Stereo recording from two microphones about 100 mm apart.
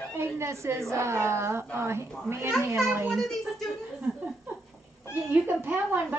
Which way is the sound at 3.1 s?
5° left (ahead or behind).